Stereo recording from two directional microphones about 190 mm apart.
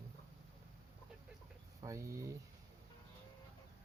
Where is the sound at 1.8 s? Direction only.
15° right (ahead or behind).